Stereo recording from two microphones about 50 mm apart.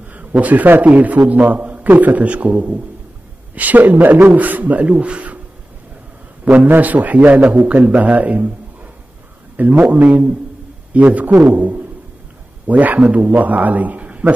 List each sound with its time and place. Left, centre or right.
0.1 s a man's voice: right
6.4 s a man's voice: right
9.6 s a man's voice: right
11.5 s a sound: right
12.6 s a man's voice: right